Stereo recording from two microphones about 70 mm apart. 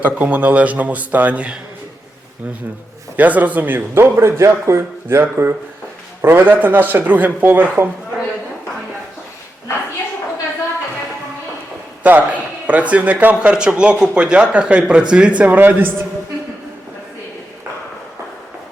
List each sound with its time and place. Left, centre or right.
0.0 s speech: right
3.2 s speech: right
4.2 s speech: right
12.0 s a man's voice: right